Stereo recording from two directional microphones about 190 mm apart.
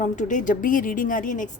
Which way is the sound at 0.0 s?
40° left (ahead or behind).